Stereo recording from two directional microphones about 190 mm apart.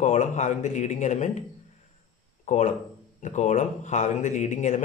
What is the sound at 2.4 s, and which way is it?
A man's voice, 40° left (ahead or behind).